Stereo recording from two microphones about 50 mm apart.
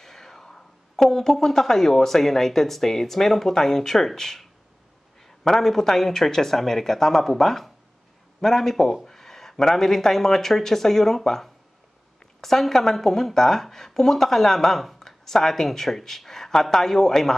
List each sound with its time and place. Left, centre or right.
0.0 s speech: centre